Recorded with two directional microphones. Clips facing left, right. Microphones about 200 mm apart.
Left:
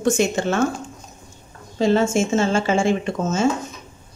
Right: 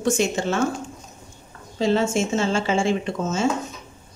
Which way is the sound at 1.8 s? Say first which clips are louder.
Left 3 dB; 50° left (ahead or behind).